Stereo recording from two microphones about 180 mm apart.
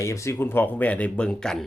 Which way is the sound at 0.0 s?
15° left (ahead or behind).